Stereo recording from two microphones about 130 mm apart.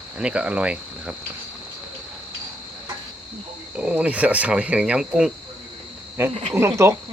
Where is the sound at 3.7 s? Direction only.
10° right (ahead or behind).